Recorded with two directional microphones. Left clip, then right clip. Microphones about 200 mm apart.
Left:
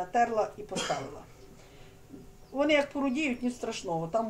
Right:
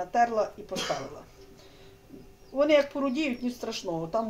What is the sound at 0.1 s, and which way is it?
Speech, 15° right (ahead or behind).